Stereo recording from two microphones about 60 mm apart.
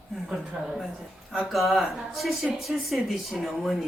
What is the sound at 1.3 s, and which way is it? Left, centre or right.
A woman's voice, centre.